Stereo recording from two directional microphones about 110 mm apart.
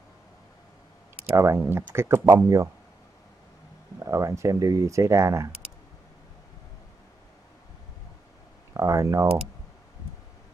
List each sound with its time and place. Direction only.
1.3 s speech: 25° right (ahead or behind)
4.0 s speech: 30° right (ahead or behind)
8.7 s speech: 30° right (ahead or behind)